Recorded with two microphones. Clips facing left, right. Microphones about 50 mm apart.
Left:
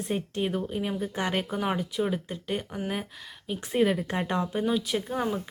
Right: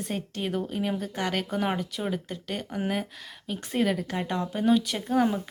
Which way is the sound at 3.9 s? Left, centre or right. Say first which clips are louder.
Left 1 dB; left.